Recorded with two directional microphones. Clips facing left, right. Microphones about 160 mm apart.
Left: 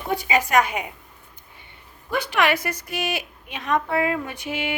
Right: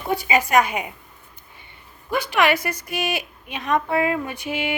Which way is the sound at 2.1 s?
10° right (ahead or behind).